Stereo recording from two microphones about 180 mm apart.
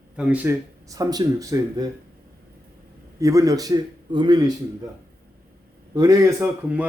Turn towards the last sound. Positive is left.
turn(degrees=-10)  # may be behind; listen again after turning